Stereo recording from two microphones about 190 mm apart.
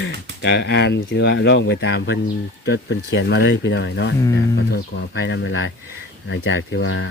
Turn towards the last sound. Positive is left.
turn(degrees=70)  # may be behind; listen again after turning